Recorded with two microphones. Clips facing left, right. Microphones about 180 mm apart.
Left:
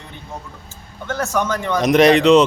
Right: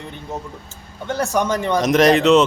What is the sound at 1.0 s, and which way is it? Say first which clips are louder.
Speech: right 1 dB; 15° right (ahead or behind).